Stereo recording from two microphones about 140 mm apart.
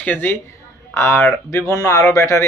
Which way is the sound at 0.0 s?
15° left (ahead or behind).